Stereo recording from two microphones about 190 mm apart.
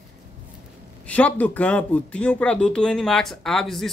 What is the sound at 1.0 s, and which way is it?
Speech, 10° left (ahead or behind).